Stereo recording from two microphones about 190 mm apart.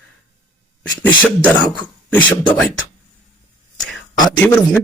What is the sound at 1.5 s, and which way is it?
Speech, 20° left (ahead or behind).